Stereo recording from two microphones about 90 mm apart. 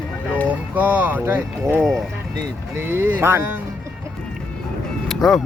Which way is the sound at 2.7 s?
25° right (ahead or behind).